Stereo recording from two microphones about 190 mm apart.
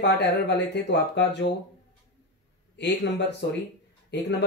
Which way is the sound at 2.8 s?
65° left (ahead or behind).